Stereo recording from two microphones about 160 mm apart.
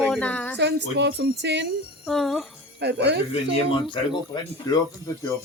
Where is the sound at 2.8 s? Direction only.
90° right.